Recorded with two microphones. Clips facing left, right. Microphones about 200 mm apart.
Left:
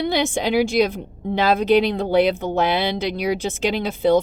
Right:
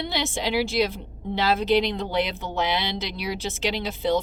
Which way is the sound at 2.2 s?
50° left (ahead or behind).